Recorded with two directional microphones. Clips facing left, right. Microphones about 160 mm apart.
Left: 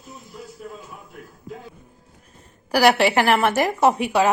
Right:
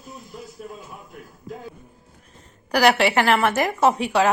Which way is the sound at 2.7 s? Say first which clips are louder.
Left 1 dB; 10° left (ahead or behind).